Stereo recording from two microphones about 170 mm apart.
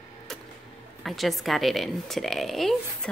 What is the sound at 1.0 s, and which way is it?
Speech, centre (ahead or behind).